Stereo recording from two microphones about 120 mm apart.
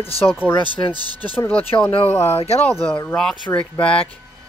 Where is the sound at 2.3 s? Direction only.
60° left (ahead or behind).